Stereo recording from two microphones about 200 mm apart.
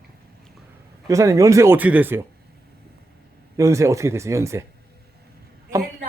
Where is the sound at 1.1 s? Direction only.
15° right (ahead or behind).